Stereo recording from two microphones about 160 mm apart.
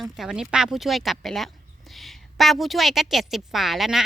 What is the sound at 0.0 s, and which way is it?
A woman's voice, centre (ahead or behind).